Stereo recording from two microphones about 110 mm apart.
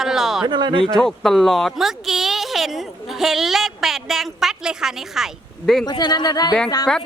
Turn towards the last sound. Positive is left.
turn(degrees=35)  # may be behind; listen again after turning